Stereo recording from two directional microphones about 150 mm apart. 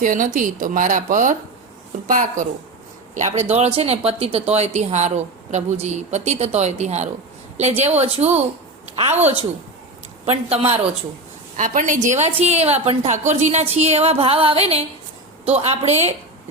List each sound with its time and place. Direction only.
0.0 s a woman's voice: 60° right (ahead or behind); by 10.8 s 45° right (ahead or behind)
11.5 s a woman's voice: 60° right (ahead or behind)